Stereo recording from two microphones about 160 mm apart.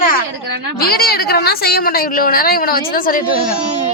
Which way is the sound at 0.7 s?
75° left (ahead or behind).